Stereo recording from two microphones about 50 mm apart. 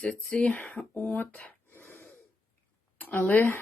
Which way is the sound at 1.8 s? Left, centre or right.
Left.